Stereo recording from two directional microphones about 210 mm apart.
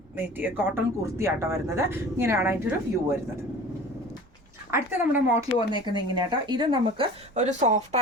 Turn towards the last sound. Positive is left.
turn(degrees=-35)  # may be behind; listen again after turning